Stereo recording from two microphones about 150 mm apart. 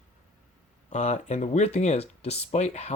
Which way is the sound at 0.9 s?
50° left (ahead or behind).